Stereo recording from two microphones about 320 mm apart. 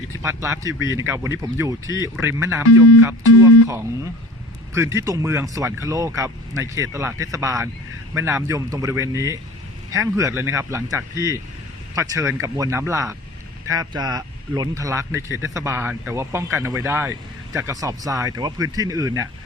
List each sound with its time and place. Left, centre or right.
0.2 s speech: centre
2.6 s speech: left
4.7 s speech: centre